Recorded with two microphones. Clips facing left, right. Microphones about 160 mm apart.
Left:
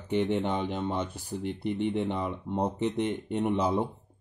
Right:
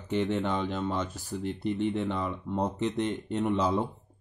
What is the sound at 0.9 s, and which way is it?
Speech, 60° left (ahead or behind).